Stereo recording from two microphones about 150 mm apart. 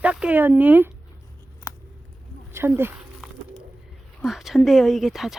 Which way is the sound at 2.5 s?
15° right (ahead or behind).